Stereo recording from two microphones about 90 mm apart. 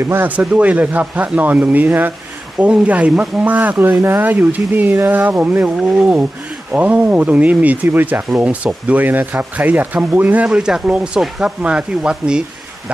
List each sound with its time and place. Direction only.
0.1 s speech: 20° right (ahead or behind)
5.8 s speech: 10° right (ahead or behind)